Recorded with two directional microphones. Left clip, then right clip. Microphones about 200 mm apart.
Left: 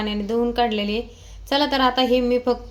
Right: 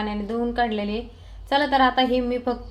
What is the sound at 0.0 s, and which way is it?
A woman's voice, 15° left (ahead or behind).